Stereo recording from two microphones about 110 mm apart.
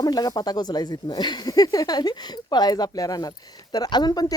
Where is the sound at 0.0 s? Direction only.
35° left (ahead or behind).